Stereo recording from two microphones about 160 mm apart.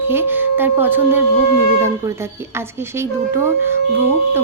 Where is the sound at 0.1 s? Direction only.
15° right (ahead or behind).